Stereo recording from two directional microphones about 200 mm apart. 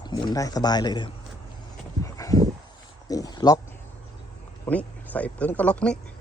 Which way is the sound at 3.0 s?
20° left (ahead or behind).